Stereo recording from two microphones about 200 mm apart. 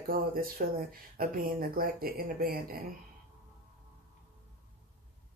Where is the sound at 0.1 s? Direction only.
45° right (ahead or behind).